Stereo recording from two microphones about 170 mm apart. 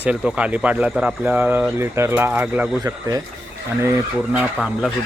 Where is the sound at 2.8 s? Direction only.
20° right (ahead or behind).